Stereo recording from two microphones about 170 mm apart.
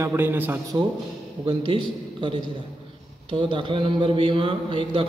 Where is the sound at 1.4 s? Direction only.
30° right (ahead or behind).